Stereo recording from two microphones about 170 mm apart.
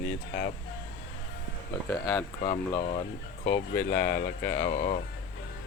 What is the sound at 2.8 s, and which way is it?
Speech, 35° left (ahead or behind).